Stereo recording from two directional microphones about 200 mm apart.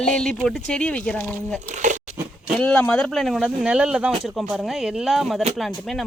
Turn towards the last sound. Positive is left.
turn(degrees=0)  # may be behind; listen again after turning